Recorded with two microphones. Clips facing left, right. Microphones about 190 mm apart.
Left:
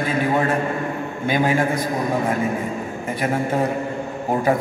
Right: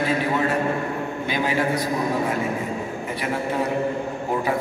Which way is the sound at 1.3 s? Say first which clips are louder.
Left 5 dB; 50° left (ahead or behind).